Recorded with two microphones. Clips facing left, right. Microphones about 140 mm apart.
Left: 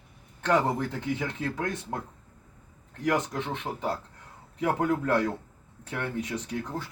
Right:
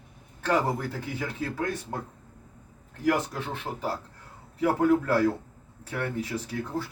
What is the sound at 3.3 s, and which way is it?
Speech, 20° left (ahead or behind).